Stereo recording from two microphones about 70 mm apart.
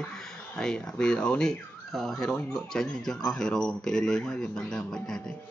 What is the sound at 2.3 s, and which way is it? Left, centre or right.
Speech, centre.